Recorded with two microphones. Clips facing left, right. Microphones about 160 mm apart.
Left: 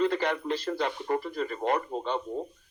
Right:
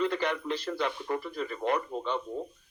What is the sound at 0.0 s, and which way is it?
Speech, 35° left (ahead or behind).